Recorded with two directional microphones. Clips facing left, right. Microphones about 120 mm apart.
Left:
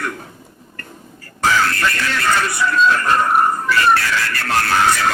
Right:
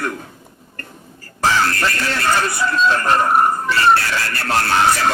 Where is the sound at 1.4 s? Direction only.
30° right (ahead or behind).